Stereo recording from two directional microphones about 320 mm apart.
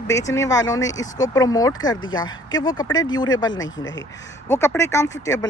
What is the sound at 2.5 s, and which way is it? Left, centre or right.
Speech, left.